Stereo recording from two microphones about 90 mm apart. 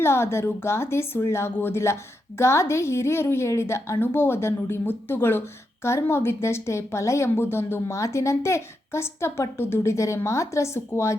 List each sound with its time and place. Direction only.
0.0 s a woman's voice: 30° left (ahead or behind)